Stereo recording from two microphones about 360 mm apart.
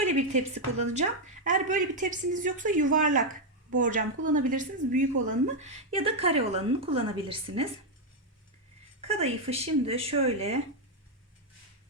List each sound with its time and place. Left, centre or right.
0.0 s a woman's voice: centre
9.0 s a woman's voice: centre